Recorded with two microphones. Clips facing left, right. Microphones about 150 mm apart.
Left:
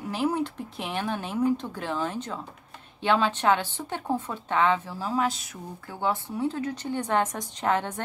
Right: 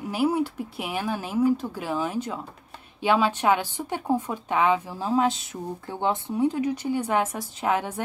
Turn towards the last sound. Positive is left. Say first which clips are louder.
# right 1 dB
turn(degrees=-10)  # may be behind; listen again after turning